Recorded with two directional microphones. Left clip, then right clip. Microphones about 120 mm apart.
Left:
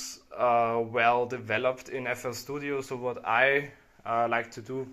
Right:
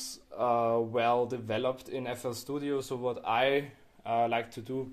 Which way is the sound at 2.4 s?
30° right (ahead or behind).